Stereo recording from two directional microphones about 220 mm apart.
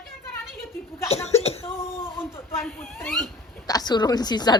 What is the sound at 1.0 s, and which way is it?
Speech, 30° left (ahead or behind).